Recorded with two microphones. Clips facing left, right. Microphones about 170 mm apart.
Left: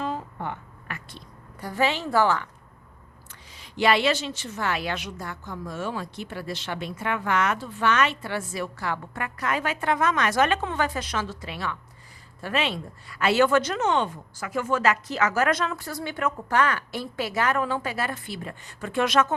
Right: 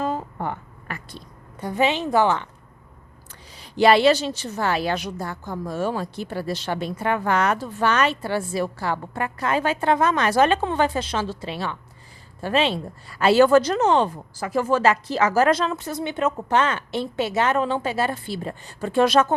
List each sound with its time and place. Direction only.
0.0 s a sound: 45° right (ahead or behind)
1.6 s a woman's voice: 20° right (ahead or behind)
3.6 s a woman's voice: 35° right (ahead or behind)